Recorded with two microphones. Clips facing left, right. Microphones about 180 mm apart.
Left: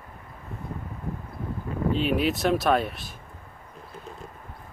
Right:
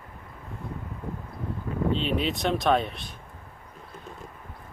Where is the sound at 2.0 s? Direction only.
5° left (ahead or behind).